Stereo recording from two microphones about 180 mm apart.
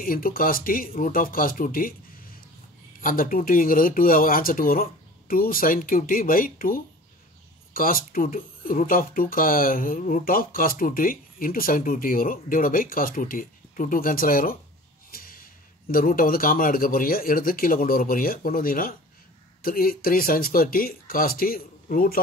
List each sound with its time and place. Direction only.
0.0 s speech: 55° left (ahead or behind)
3.0 s speech: 50° left (ahead or behind)
15.0 s a sound: 50° left (ahead or behind)
15.9 s speech: 50° left (ahead or behind)